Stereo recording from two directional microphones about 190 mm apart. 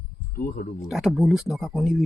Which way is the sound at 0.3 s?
55° left (ahead or behind).